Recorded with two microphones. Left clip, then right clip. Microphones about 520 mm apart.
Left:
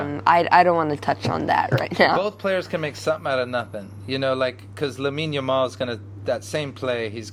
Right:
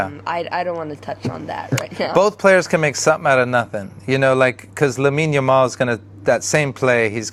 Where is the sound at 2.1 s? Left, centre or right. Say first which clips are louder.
Right 9 dB; right.